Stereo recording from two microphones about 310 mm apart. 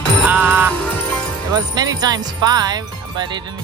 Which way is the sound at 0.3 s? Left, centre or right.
Centre.